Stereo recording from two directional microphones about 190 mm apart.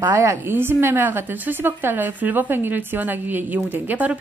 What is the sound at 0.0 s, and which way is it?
A woman's voice, 15° right (ahead or behind).